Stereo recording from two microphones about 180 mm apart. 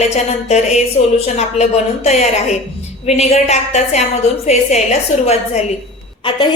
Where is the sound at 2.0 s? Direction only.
40° left (ahead or behind).